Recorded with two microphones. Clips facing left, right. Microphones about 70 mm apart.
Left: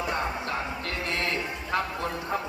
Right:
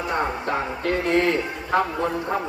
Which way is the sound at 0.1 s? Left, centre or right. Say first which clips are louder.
Right 5 dB; right.